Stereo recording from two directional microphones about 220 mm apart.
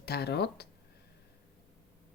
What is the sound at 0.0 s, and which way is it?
Speech, 45° left (ahead or behind).